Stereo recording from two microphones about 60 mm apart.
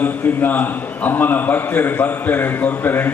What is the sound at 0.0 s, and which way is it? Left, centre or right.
A man's voice, left.